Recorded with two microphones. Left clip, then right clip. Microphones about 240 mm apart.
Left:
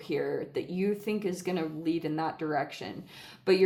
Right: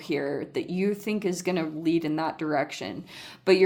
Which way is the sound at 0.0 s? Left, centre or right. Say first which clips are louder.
Right 2 dB; right.